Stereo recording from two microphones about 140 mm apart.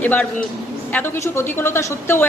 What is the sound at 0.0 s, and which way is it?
Speech, 10° left (ahead or behind).